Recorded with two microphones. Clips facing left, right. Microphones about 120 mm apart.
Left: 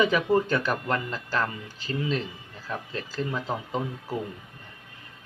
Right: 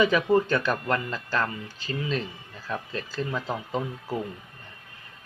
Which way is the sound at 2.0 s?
25° left (ahead or behind).